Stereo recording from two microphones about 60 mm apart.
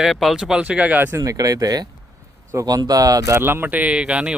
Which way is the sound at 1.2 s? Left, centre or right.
Right.